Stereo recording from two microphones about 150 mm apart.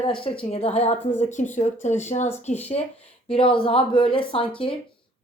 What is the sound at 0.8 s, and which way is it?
Speech, 50° left (ahead or behind).